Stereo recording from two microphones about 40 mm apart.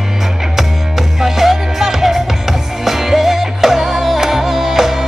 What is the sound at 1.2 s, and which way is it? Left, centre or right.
Music, centre.